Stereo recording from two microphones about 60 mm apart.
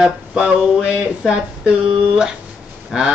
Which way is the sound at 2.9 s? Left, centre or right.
Centre.